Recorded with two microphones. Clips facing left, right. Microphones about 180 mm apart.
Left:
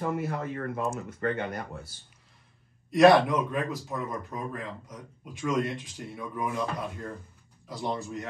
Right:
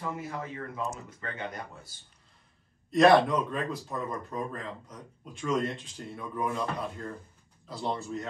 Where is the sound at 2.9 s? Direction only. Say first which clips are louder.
Left 2 dB; 10° left (ahead or behind).